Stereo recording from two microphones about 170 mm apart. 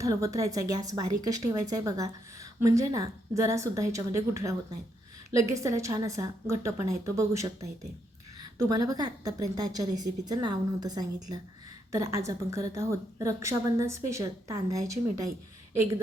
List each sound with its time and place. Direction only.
0.0 s a woman's voice: 20° right (ahead or behind)